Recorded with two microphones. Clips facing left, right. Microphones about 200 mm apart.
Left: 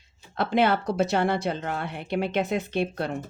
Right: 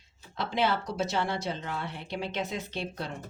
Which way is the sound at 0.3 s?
55° left (ahead or behind).